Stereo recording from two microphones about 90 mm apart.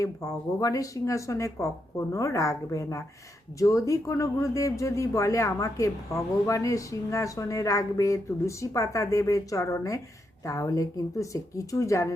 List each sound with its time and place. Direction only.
0.0 s speech: 40° left (ahead or behind)